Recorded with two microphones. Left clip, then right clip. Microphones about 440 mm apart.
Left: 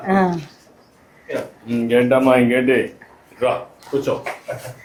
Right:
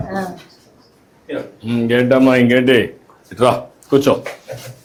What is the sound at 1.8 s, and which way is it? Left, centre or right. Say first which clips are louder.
Speech: right 2 dB; right.